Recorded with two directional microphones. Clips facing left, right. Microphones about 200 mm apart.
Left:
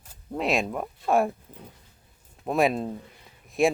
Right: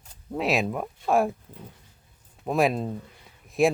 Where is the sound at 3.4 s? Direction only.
Centre (ahead or behind).